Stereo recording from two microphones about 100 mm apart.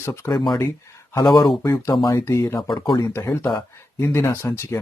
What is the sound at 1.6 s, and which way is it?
Speech, 30° left (ahead or behind).